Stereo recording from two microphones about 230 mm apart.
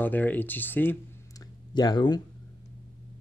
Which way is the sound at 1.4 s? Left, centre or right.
Centre.